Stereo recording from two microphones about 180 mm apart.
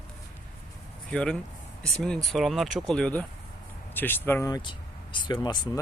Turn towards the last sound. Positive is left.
turn(degrees=25)  # may be behind; listen again after turning